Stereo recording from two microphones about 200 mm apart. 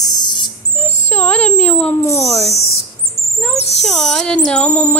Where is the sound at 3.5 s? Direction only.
35° left (ahead or behind).